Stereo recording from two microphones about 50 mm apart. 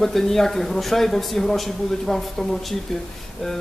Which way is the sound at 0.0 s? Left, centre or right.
Centre.